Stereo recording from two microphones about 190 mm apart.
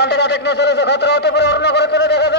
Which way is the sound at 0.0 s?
65° left (ahead or behind).